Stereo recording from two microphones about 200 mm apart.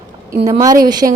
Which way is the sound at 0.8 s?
20° right (ahead or behind).